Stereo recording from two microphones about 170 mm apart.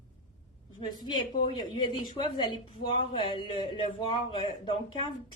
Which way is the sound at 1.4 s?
30° left (ahead or behind).